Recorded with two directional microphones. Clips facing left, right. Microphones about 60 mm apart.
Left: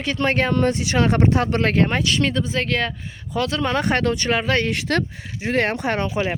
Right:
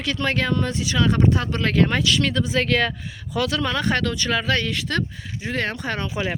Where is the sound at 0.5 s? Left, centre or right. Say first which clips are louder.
Left 4 dB; left.